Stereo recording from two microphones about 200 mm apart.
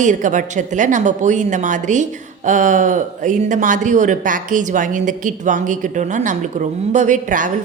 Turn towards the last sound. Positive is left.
turn(degrees=-40)  # may be behind; listen again after turning